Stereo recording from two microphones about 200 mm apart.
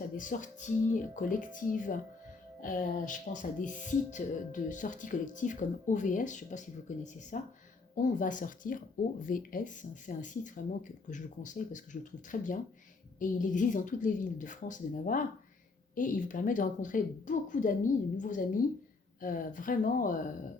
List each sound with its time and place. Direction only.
0.2 s speech: 40° left (ahead or behind)